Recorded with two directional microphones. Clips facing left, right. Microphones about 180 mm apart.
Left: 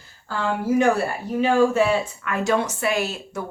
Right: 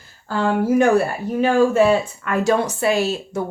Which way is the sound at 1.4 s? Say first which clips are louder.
Right 3 dB; 45° right (ahead or behind).